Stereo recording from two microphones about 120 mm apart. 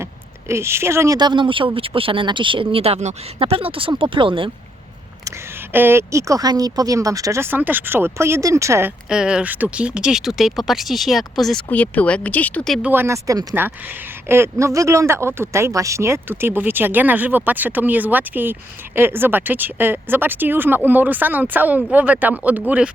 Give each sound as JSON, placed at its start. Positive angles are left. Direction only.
{"t": 0.0, "sound": "speech", "side_deg": -20}
{"t": 2.7, "sound": "speech", "side_deg": -55}
{"t": 3.3, "sound": "speech", "side_deg": -50}
{"t": 5.7, "sound": "speech", "side_deg": -20}
{"t": 9.0, "sound": "speech", "side_deg": -5}
{"t": 11.7, "sound": "speech", "side_deg": 10}
{"t": 12.8, "sound": "speech", "side_deg": -15}